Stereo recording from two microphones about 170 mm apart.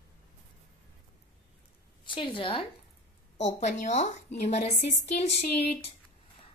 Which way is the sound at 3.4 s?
40° left (ahead or behind).